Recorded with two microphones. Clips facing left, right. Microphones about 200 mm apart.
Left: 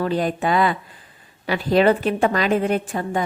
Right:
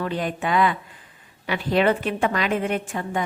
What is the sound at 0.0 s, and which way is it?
A woman's voice, 35° left (ahead or behind).